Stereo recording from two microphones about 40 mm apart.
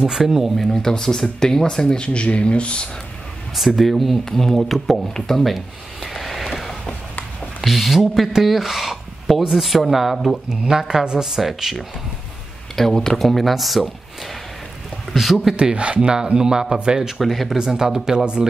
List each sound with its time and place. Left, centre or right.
0.0 s speech: centre
0.6 s speech: centre; by 2.9 s left
3.5 s speech: centre
6.0 s a sound: centre
7.6 s speech: centre
12.7 s speech: centre
15.5 s speech: right
17.2 s speech: centre
17.6 s speech: centre